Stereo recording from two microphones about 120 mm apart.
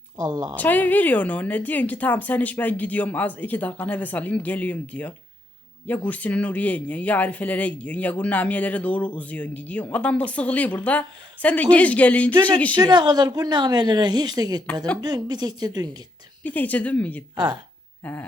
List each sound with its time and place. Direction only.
0.2 s a woman's voice: 30° right (ahead or behind)
0.5 s speech: 15° left (ahead or behind)
12.7 s a woman's voice: 35° right (ahead or behind)
16.4 s speech: 15° left (ahead or behind)
17.3 s a woman's voice: 40° right (ahead or behind)
18.0 s speech: 15° left (ahead or behind)